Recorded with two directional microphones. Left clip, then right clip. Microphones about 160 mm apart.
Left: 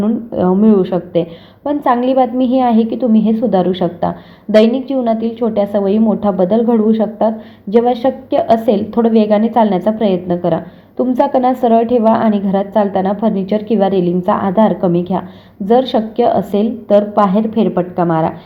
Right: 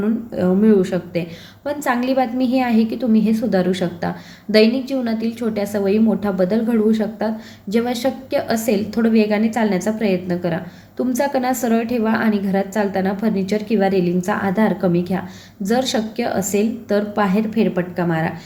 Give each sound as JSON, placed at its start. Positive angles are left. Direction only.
{"t": 0.6, "sound": "a woman's voice", "side_deg": 20}